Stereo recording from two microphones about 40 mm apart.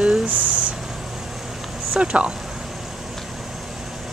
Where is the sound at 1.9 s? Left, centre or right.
Right.